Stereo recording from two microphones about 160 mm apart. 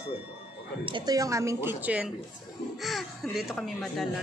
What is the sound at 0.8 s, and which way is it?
A woman's voice, 30° right (ahead or behind).